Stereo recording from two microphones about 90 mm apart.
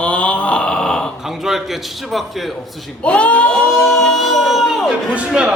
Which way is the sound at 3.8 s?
5° left (ahead or behind).